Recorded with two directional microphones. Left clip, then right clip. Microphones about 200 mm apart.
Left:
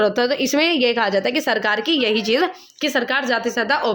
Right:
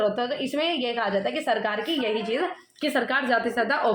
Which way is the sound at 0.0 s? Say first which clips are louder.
Left 7 dB; 60° left (ahead or behind).